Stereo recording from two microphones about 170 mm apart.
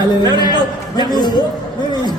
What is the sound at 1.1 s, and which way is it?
Speech, 25° left (ahead or behind).